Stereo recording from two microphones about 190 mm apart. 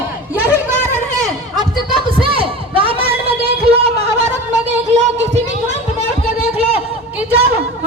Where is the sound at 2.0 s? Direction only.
30° right (ahead or behind).